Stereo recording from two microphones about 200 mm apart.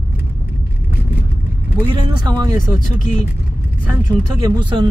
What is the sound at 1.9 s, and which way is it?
Speech, 20° right (ahead or behind).